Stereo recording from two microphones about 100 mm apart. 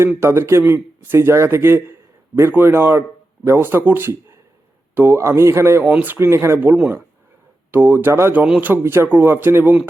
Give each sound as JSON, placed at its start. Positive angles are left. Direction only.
{"t": 0.2, "sound": "a man's voice", "side_deg": -25}
{"t": 5.8, "sound": "a man's voice", "side_deg": -15}